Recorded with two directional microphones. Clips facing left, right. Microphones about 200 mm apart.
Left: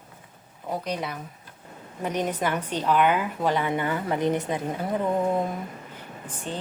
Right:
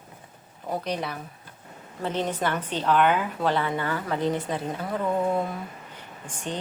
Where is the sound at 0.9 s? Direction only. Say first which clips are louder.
Even; 15° left (ahead or behind).